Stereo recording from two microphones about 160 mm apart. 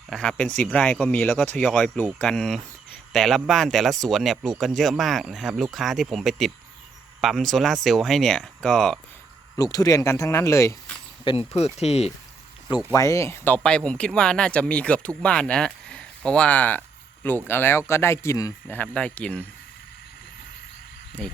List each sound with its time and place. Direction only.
0.1 s speech: 5° left (ahead or behind)
9.6 s speech: 20° left (ahead or behind)
11.3 s speech: 40° left (ahead or behind)
12.9 s speech: 20° left (ahead or behind)
18.8 s speech: 10° left (ahead or behind)